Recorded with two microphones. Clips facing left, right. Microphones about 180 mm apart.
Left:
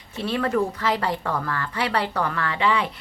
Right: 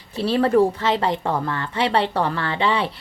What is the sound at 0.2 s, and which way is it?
Speech, 35° right (ahead or behind).